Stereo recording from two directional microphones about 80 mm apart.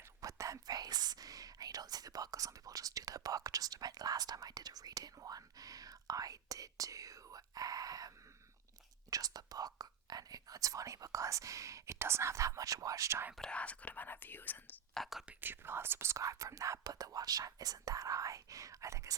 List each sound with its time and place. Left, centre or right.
0.2 s speech: right
13.3 s speech: centre
14.9 s speech: centre
15.4 s speech: right